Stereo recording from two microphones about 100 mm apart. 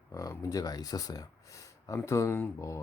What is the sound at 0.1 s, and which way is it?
Speech, 35° left (ahead or behind).